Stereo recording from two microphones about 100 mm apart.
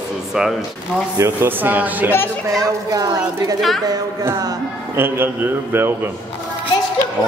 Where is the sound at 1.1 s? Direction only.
25° right (ahead or behind).